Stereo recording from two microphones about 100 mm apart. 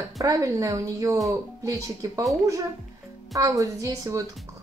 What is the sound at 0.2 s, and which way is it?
A woman's voice, 35° right (ahead or behind).